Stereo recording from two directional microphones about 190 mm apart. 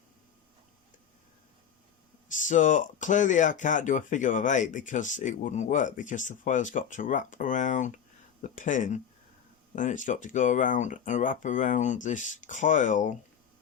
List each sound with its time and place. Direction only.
2.3 s speech: 40° left (ahead or behind)